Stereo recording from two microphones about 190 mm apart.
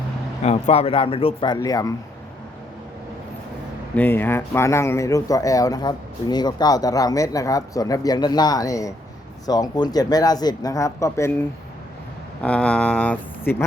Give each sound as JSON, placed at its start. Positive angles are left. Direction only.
{"t": 0.4, "sound": "speech", "side_deg": 35}
{"t": 3.9, "sound": "speech", "side_deg": 10}